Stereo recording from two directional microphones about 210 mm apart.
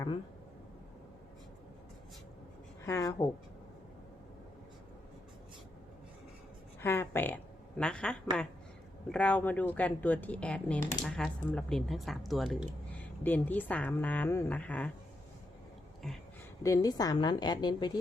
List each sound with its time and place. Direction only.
2.8 s speech: 15° left (ahead or behind)
6.8 s speech: 10° left (ahead or behind)
16.0 s speech: centre (ahead or behind)
16.6 s a woman's voice: 15° left (ahead or behind)